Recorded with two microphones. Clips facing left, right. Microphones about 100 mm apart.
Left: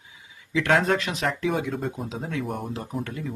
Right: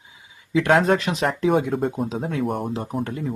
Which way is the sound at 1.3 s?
45° right (ahead or behind).